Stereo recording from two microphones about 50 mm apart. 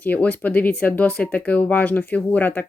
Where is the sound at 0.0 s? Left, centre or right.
Left.